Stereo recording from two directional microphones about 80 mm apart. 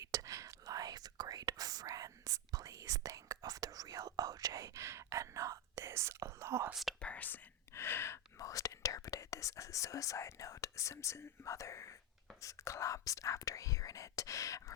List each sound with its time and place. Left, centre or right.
0.0 s whispering: right
7.0 s whispering: centre
7.7 s gasp: left
8.4 s speech: left